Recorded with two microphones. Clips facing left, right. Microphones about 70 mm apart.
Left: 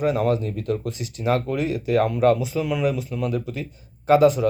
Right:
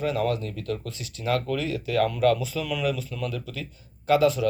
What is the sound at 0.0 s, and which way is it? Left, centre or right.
Speech, left.